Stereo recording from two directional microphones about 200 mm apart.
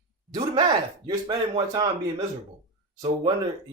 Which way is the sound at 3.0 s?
25° right (ahead or behind).